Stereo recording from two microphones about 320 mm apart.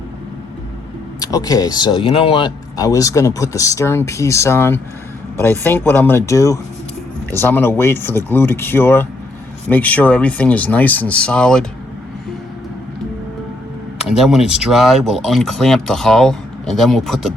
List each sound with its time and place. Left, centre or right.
1.2 s speech: centre
14.0 s speech: centre